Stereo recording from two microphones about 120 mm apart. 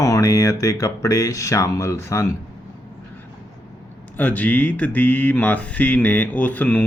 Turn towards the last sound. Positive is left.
turn(degrees=15)  # may be behind; listen again after turning